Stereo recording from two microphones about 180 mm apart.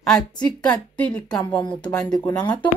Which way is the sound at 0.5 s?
10° left (ahead or behind).